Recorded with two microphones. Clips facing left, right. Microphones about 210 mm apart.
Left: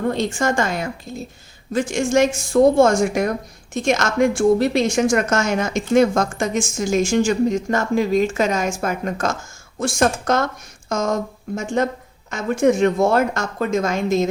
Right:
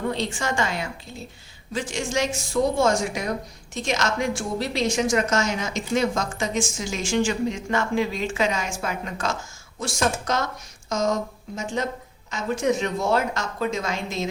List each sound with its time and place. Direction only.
0.0 s a woman's voice: 50° left (ahead or behind)